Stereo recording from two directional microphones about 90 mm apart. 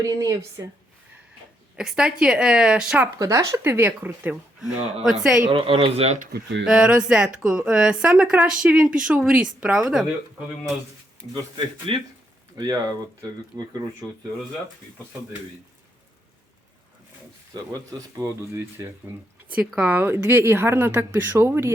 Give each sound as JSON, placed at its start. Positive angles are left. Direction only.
{"t": 0.0, "sound": "speech", "side_deg": -40}
{"t": 1.7, "sound": "speech", "side_deg": -5}
{"t": 3.2, "sound": "speech", "side_deg": -40}
{"t": 5.0, "sound": "speech", "side_deg": -5}
{"t": 5.5, "sound": "speech", "side_deg": -85}
{"t": 6.7, "sound": "speech", "side_deg": -10}
{"t": 11.9, "sound": "speech", "side_deg": -80}
{"t": 12.5, "sound": "speech", "side_deg": -50}
{"t": 14.0, "sound": "speech", "side_deg": -50}
{"t": 17.5, "sound": "speech", "side_deg": -50}
{"t": 18.2, "sound": "speech", "side_deg": -35}
{"t": 19.5, "sound": "speech", "side_deg": -15}